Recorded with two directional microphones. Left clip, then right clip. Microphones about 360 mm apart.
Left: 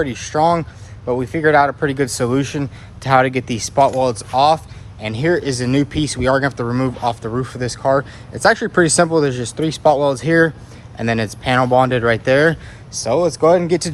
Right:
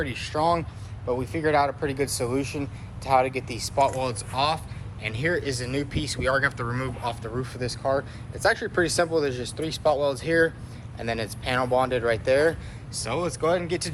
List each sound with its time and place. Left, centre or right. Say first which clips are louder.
0.0 s speech: left 9 dB; centre